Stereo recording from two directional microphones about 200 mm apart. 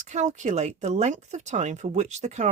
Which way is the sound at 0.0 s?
35° right (ahead or behind).